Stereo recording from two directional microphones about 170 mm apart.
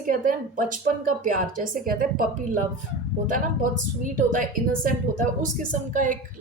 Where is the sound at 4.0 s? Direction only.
50° right (ahead or behind).